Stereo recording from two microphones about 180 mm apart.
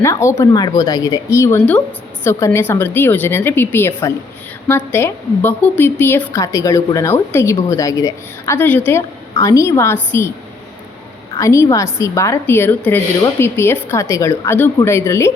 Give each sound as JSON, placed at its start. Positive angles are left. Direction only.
{"t": 0.0, "sound": "a woman's voice", "side_deg": 15}
{"t": 11.3, "sound": "a woman's voice", "side_deg": 15}